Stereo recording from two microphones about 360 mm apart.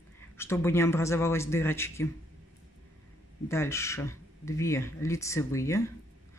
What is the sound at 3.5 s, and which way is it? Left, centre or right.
Speech, centre.